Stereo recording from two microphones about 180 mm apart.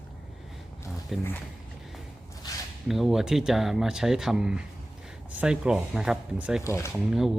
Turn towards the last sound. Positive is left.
turn(degrees=0)  # may be behind; listen again after turning